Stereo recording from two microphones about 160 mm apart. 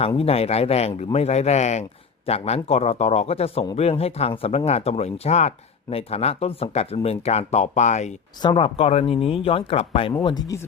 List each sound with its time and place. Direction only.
0.2 s speech: 40° left (ahead or behind)
8.4 s speech: 30° left (ahead or behind)
10.2 s speech: 25° left (ahead or behind)